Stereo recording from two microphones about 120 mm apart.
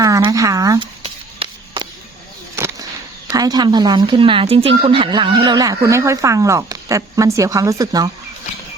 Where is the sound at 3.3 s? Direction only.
35° right (ahead or behind).